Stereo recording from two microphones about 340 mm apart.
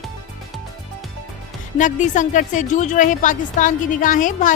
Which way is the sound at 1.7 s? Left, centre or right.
Left.